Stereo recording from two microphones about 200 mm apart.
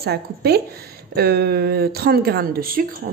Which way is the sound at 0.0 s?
50° right (ahead or behind).